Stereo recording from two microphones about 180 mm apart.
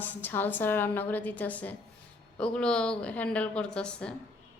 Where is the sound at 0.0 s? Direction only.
10° left (ahead or behind).